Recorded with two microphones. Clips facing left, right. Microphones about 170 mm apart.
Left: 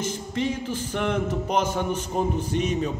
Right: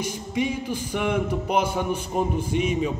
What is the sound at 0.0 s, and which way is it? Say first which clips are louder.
A man's voice: right 1 dB; 10° right (ahead or behind).